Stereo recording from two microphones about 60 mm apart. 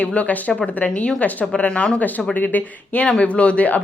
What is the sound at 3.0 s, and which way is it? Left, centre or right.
Speech, centre.